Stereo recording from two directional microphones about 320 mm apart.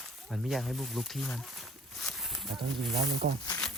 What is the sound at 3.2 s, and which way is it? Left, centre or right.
Speech, right.